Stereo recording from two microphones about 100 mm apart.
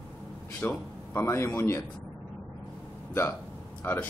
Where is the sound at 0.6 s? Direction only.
20° left (ahead or behind).